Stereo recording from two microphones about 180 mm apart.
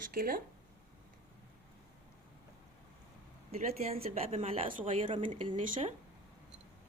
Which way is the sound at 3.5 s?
35° right (ahead or behind).